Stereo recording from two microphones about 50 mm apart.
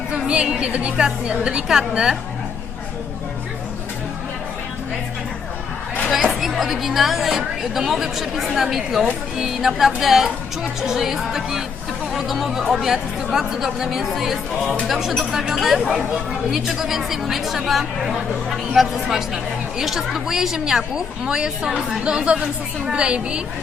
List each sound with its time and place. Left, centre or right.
0.1 s a woman's voice: centre
6.4 s a woman's voice: centre